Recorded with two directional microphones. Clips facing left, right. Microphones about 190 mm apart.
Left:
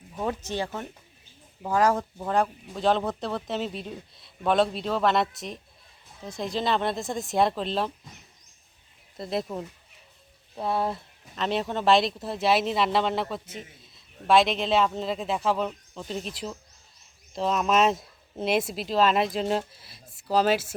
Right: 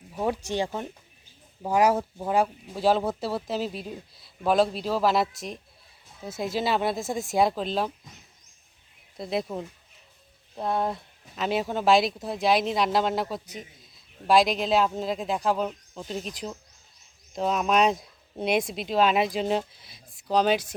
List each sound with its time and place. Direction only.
0.2 s speech: 15° right (ahead or behind)
9.1 s speech: centre (ahead or behind)
17.3 s speech: centre (ahead or behind)